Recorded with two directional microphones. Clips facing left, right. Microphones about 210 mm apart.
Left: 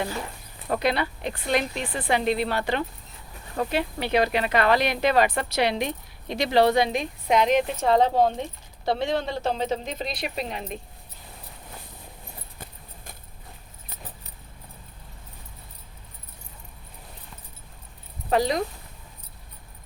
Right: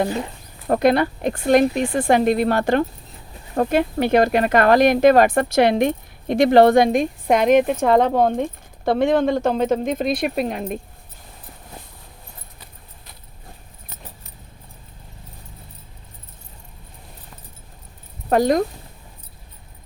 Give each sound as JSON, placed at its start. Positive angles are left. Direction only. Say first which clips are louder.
{"t": 0.7, "sound": "speech", "louder": "right 8 dB", "side_deg": -50}
{"t": 18.3, "sound": "speech", "louder": "right 6 dB", "side_deg": -50}